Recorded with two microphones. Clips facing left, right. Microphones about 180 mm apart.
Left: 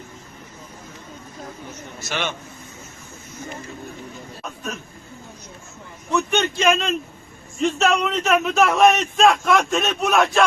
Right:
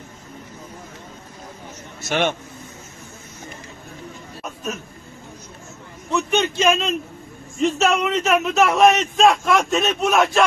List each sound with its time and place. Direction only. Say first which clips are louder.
2.0 s a man's voice: right 6 dB; 50° right (ahead or behind)
6.1 s a man's voice: right 1 dB; 5° right (ahead or behind)